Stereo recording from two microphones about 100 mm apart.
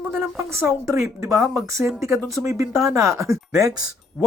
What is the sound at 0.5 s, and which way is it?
Speech, 30° right (ahead or behind).